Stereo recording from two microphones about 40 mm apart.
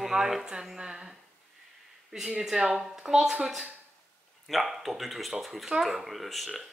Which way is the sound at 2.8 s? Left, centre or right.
Centre.